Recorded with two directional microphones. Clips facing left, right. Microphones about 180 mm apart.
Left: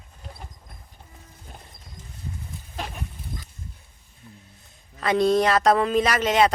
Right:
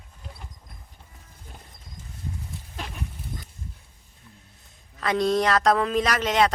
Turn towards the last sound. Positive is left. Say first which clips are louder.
# left 2 dB
turn(degrees=5)  # may be behind; listen again after turning